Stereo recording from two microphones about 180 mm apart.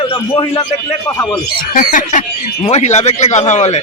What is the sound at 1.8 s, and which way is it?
Bird, 45° left (ahead or behind).